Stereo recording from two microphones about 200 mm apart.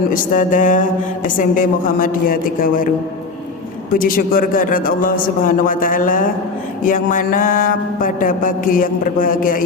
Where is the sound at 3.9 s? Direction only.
45° left (ahead or behind).